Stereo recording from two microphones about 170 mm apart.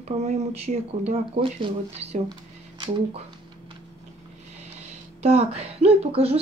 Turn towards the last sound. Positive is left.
turn(degrees=-35)  # may be behind; listen again after turning